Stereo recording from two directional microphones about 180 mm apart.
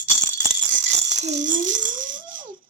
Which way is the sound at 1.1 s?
40° right (ahead or behind).